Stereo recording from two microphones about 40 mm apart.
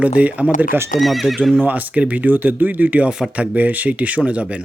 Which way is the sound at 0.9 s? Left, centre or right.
Centre.